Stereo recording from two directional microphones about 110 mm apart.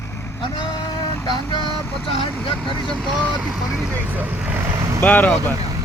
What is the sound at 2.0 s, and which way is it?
Speech, 55° left (ahead or behind).